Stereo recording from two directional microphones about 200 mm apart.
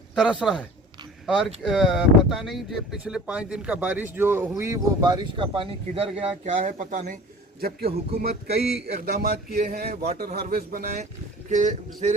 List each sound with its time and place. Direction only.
0.1 s a man's voice: 5° right (ahead or behind); by 6.7 s 30° right (ahead or behind)
6.7 s speech: 45° right (ahead or behind)